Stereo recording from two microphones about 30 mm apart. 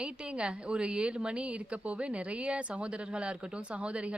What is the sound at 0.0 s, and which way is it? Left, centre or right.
A woman's voice, right.